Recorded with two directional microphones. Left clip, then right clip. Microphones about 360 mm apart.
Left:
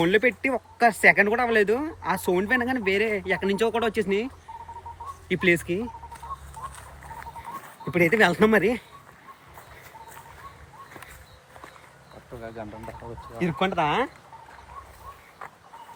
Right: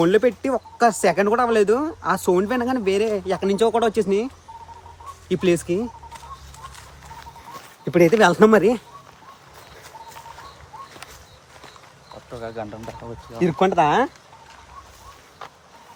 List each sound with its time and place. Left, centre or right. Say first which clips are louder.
0.0 s speech: right 4 dB; centre
5.3 s speech: right 2 dB; centre
8.1 s speech: right 4 dB; centre
12.6 s speech: right 7 dB; right
13.4 s speech: right 7 dB; centre